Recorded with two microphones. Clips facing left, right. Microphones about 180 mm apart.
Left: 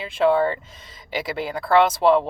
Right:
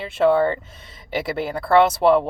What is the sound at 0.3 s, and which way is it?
Speech, 60° right (ahead or behind).